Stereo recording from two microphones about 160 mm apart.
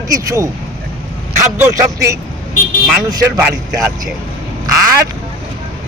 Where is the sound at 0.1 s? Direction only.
20° right (ahead or behind).